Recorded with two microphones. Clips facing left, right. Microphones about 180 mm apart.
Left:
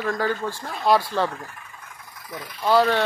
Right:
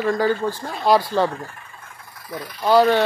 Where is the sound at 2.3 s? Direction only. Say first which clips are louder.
Right 3 dB; 25° right (ahead or behind).